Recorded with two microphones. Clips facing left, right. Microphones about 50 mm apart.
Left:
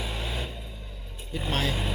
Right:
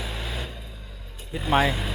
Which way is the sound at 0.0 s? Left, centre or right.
Centre.